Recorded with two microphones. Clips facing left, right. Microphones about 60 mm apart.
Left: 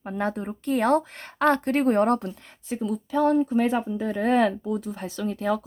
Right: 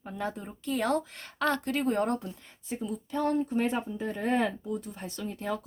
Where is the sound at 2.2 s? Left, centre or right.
Left.